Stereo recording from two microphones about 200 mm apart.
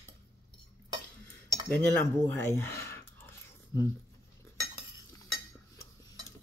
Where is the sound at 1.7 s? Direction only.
10° left (ahead or behind).